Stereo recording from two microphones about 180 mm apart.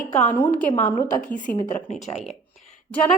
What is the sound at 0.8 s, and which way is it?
Speech, 45° left (ahead or behind).